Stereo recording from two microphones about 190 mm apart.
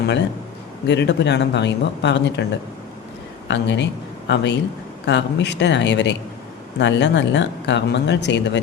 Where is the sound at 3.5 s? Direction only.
70° left (ahead or behind).